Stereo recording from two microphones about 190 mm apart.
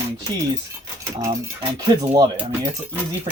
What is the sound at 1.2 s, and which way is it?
Speech, 20° right (ahead or behind).